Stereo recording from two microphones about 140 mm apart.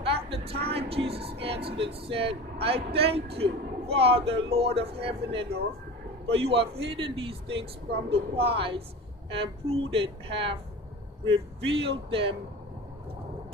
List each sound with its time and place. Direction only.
0.0 s a man's voice: 40° right (ahead or behind)
11.7 s a woman's voice: 40° right (ahead or behind)